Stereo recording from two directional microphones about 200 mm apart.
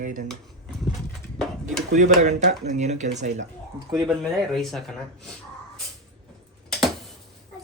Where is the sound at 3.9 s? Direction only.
15° right (ahead or behind).